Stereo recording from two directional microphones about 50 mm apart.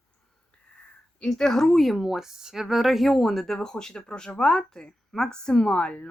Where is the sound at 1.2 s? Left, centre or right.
Centre.